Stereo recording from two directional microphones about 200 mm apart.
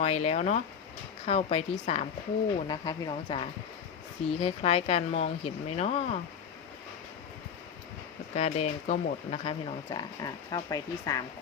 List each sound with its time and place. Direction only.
0.0 s speech: 35° left (ahead or behind)
2.6 s speech: 20° left (ahead or behind)
8.4 s speech: 35° left (ahead or behind); by 11.2 s 15° left (ahead or behind)